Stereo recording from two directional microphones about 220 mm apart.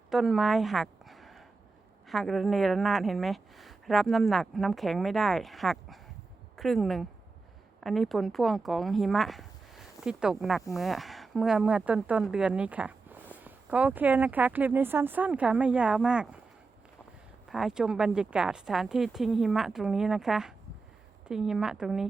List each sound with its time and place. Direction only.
0.1 s a sound: centre (ahead or behind)
2.0 s speech: centre (ahead or behind)
17.5 s speech: centre (ahead or behind)